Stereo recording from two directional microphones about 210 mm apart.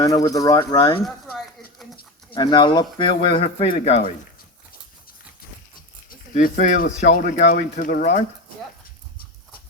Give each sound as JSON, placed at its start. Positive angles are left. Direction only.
{"t": 0.0, "sound": "speech", "side_deg": 15}
{"t": 2.3, "sound": "speech", "side_deg": 20}
{"t": 6.1, "sound": "speech", "side_deg": 40}